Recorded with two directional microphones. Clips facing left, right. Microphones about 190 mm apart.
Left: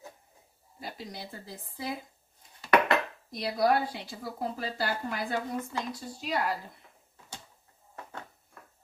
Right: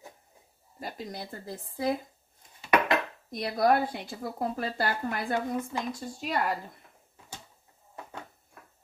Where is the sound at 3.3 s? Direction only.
50° right (ahead or behind).